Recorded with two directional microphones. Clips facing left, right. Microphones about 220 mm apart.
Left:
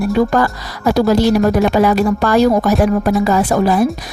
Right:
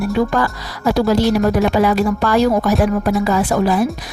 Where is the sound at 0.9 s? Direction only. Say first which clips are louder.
Left 3 dB; 45° left (ahead or behind).